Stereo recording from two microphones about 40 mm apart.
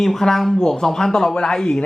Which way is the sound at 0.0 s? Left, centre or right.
Centre.